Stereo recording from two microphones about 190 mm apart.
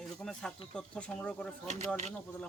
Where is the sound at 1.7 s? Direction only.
35° right (ahead or behind).